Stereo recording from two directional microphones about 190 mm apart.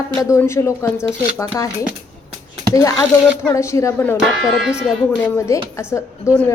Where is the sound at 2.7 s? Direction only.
15° left (ahead or behind).